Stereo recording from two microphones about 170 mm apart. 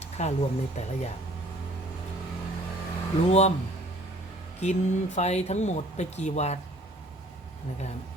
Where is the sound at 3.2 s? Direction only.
40° left (ahead or behind).